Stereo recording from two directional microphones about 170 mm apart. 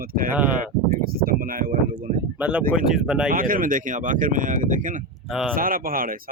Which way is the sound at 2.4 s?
5° right (ahead or behind).